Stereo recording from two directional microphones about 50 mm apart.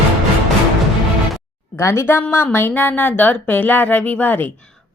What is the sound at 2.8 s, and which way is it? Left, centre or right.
Speech, left.